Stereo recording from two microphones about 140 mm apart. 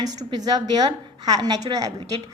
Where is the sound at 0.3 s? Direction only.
30° right (ahead or behind).